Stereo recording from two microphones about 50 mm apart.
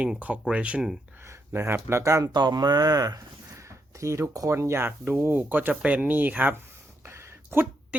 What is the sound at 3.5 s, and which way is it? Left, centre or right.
Speech, right.